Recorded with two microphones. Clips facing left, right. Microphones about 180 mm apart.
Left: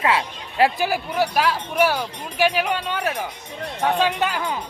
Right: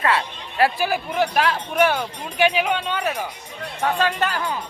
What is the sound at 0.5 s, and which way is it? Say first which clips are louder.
Speech: left 1 dB; 25° left (ahead or behind).